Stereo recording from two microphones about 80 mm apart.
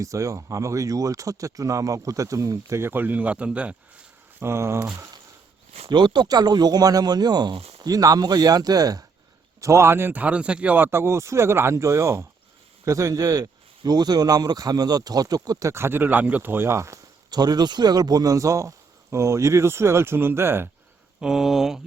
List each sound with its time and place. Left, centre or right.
0.0 s speech: right; by 3.8 s centre
4.4 s speech: right
5.9 s speech: right
7.9 s speech: right
9.6 s speech: right
17.3 s speech: right
21.2 s speech: centre